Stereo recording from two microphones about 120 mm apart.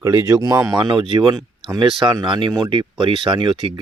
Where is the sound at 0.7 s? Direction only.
40° right (ahead or behind).